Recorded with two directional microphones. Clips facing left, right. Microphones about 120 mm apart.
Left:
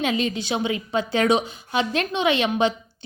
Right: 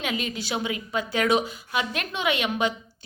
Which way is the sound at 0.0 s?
25° left (ahead or behind).